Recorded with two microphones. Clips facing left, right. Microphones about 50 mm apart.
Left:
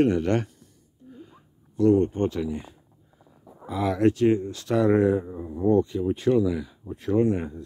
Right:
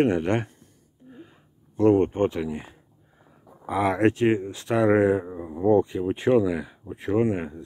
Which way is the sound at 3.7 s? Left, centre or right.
Right.